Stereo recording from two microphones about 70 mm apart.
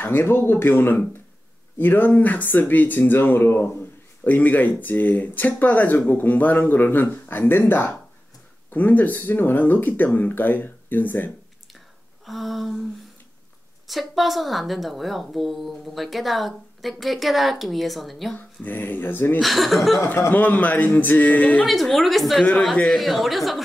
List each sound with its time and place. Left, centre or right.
0.0 s speech: left
12.3 s a woman's voice: centre
13.8 s a woman's voice: centre
18.3 s speech: left
19.4 s a woman's voice: centre
20.3 s speech: left
21.6 s a woman's voice: centre